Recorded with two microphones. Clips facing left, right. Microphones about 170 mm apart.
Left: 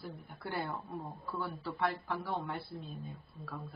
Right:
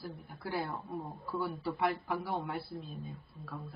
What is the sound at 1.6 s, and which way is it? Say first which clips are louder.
Speech: right 1 dB; 15° right (ahead or behind).